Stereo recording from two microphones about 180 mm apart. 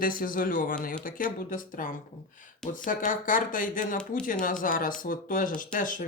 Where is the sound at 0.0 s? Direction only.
50° left (ahead or behind).